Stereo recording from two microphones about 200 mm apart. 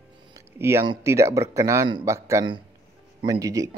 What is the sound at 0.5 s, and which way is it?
Speech, 15° right (ahead or behind).